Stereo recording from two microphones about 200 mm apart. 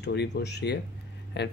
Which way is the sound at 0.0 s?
55° left (ahead or behind).